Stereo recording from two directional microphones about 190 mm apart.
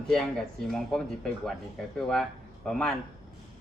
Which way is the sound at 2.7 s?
Centre (ahead or behind).